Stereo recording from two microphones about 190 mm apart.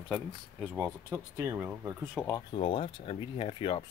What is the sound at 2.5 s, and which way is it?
Speech, 30° left (ahead or behind).